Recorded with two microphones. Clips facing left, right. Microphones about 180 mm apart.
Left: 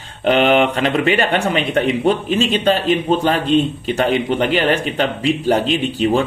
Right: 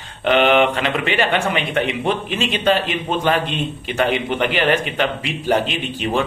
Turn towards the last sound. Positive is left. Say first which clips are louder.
# left 5 dB
turn(degrees=40)  # may be behind; listen again after turning